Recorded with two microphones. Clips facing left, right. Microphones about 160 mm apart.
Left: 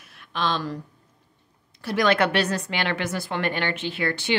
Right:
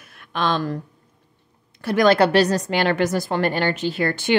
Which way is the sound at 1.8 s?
55° right (ahead or behind).